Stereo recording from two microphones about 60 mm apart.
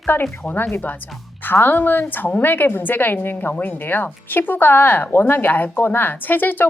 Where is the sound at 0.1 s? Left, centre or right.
Left.